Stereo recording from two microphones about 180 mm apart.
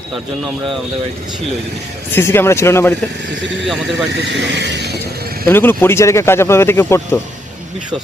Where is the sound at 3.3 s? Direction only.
80° right.